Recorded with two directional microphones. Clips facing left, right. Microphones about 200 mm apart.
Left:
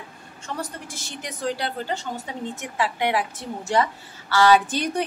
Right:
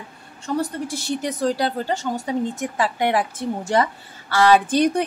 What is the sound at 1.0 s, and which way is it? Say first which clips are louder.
A woman's voice: right 6 dB; 35° right (ahead or behind).